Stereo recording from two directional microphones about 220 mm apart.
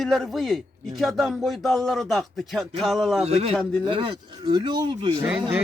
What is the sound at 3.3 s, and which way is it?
Speech, 30° right (ahead or behind).